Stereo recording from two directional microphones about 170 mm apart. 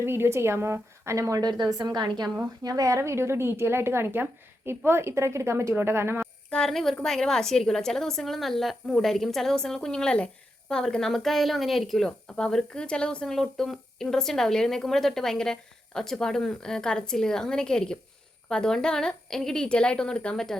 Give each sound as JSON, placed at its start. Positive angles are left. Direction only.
{"t": 0.0, "sound": "a woman's voice", "side_deg": -15}
{"t": 6.5, "sound": "speech", "side_deg": 5}